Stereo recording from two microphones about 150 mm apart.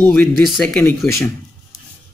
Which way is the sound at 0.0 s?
5° left (ahead or behind).